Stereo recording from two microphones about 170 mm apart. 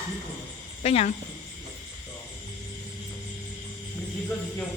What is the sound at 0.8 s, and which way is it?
Speech, 35° left (ahead or behind).